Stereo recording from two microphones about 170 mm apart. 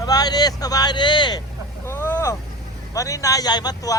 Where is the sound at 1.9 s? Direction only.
15° left (ahead or behind).